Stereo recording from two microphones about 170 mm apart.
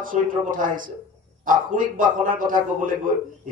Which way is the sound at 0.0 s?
50° right (ahead or behind).